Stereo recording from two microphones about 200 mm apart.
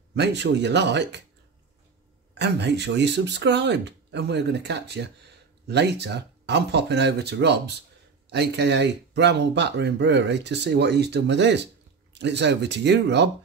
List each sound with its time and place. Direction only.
0.1 s speech: 60° right (ahead or behind)
2.3 s speech: 60° right (ahead or behind)